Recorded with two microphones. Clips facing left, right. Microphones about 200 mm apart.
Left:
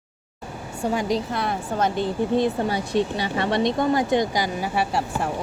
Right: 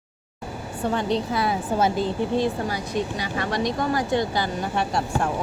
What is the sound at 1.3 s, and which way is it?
Speech, 5° right (ahead or behind).